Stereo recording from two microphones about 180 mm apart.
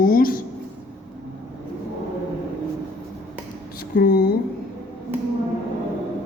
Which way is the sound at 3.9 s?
60° left (ahead or behind).